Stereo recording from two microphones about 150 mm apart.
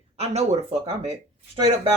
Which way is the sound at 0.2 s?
45° right (ahead or behind).